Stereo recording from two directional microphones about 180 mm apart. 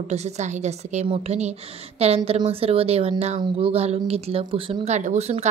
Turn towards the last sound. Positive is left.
turn(degrees=-35)  # may be behind; listen again after turning